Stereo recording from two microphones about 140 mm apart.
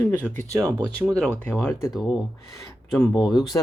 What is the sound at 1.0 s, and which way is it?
Speech, 5° left (ahead or behind).